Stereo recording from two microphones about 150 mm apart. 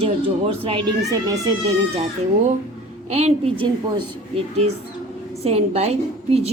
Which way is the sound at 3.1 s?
45° right (ahead or behind).